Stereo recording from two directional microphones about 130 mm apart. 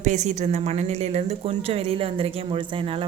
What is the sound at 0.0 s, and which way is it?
Speech, 65° right (ahead or behind).